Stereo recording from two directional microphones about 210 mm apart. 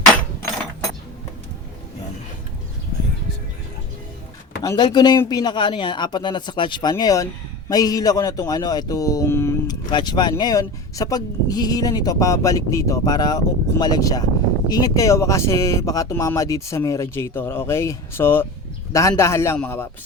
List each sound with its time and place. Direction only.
4.6 s speech: 20° left (ahead or behind)